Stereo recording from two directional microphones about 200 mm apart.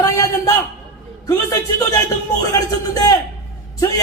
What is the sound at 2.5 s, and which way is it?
A man's voice, 15° left (ahead or behind).